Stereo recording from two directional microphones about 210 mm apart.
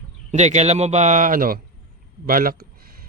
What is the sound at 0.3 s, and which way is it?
A man's voice, 35° right (ahead or behind).